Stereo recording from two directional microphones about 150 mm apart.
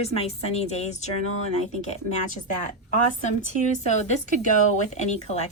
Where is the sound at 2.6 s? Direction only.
55° left (ahead or behind).